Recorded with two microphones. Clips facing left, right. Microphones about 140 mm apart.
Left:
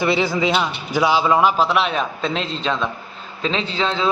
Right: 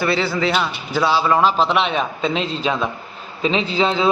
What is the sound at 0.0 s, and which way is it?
A man's voice, 15° left (ahead or behind).